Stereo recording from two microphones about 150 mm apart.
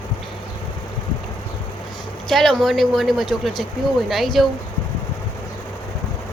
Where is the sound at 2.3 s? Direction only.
Centre (ahead or behind).